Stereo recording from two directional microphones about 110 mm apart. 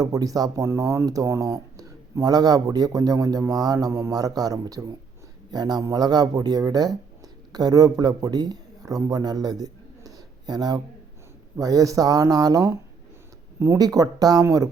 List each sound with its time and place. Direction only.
0.0 s a man's voice: 35° right (ahead or behind)